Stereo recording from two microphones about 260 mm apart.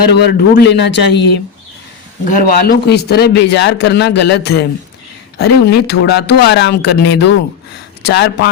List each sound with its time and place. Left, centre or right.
0.1 s a man's voice: left
2.2 s a man's voice: left